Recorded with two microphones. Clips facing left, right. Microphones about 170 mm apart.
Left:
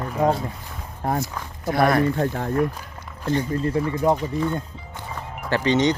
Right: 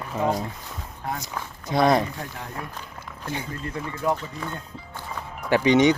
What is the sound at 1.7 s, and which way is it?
Speech, 20° right (ahead or behind).